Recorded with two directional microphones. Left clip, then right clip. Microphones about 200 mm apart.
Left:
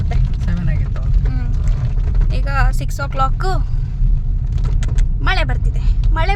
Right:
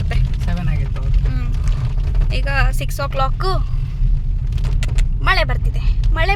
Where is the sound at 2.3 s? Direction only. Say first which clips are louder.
Right 1 dB; 5° left (ahead or behind).